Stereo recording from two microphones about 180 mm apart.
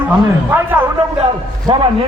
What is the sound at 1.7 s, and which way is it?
Speech, 30° right (ahead or behind).